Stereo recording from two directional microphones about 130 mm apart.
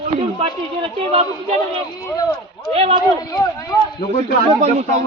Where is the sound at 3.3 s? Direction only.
25° left (ahead or behind).